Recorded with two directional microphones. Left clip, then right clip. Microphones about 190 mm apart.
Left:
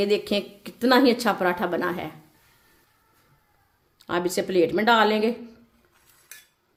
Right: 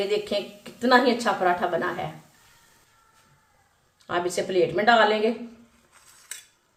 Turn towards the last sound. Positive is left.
turn(degrees=55)  # may be behind; listen again after turning